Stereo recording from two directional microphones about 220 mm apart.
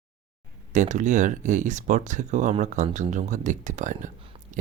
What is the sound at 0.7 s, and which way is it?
Speech, 35° right (ahead or behind).